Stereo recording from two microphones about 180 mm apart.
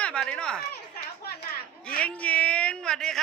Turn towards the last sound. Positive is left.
turn(degrees=5)  # may be behind; listen again after turning